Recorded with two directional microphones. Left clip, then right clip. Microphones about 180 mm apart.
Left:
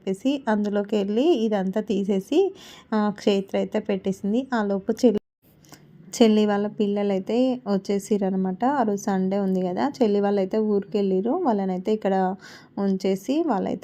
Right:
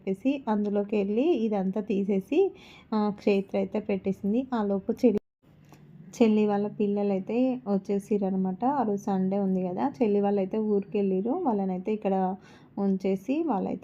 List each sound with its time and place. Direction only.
0.0 s a woman's voice: 20° left (ahead or behind)
6.1 s a woman's voice: 25° left (ahead or behind)